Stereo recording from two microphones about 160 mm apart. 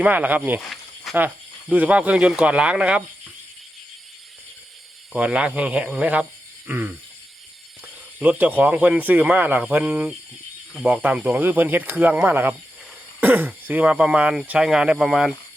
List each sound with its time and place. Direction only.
0.0 s speech: 10° right (ahead or behind)
1.1 s snake: centre (ahead or behind)
1.7 s speech: 10° right (ahead or behind)
5.1 s speech: 5° right (ahead or behind)
8.2 s speech: 10° right (ahead or behind)